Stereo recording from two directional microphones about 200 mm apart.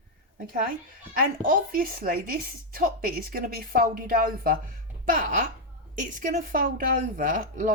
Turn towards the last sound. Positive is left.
turn(degrees=-40)  # may be behind; listen again after turning